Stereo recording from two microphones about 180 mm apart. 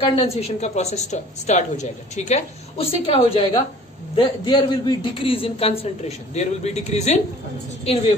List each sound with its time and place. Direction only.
0.0 s a woman's voice: 35° left (ahead or behind)